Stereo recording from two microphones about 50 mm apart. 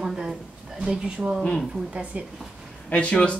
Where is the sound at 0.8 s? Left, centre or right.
Centre.